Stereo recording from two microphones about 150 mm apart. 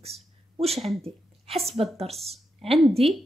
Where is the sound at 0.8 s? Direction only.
40° right (ahead or behind).